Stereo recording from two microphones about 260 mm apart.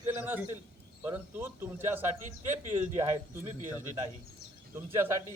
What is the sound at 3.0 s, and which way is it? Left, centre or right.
Speech, right.